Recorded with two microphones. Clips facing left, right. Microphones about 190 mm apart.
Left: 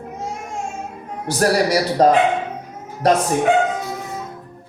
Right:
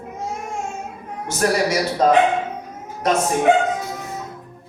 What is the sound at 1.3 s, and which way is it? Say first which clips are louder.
Speech: left 3 dB; 35° left (ahead or behind).